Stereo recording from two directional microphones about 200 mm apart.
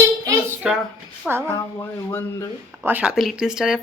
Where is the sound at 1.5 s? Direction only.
15° left (ahead or behind).